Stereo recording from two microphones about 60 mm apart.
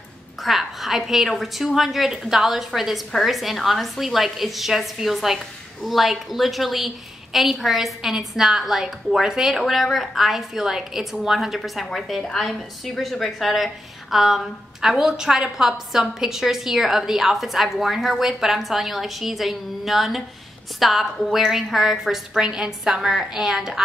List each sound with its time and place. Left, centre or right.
0.4 s a woman's voice: centre